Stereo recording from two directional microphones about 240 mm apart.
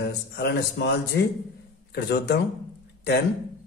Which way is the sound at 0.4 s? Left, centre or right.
Left.